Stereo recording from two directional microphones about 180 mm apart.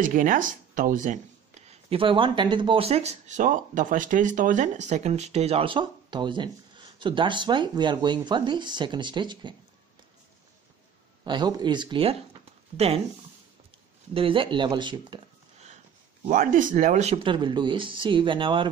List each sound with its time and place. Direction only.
0.0 s speech: 45° right (ahead or behind)
1.7 s speech: 30° right (ahead or behind)
11.2 s speech: 25° right (ahead or behind)
14.1 s speech: 30° right (ahead or behind)
16.3 s speech: 45° right (ahead or behind); by 18.7 s 25° right (ahead or behind)